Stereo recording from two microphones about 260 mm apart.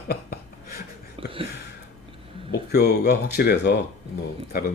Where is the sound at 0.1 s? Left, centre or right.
Left.